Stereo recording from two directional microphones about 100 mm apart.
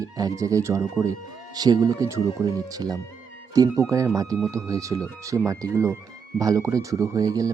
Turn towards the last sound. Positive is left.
turn(degrees=-35)  # may be behind; listen again after turning